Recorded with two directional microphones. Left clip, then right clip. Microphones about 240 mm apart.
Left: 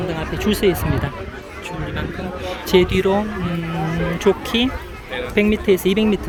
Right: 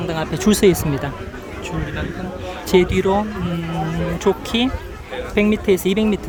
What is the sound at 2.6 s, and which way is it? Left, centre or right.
Speech, centre.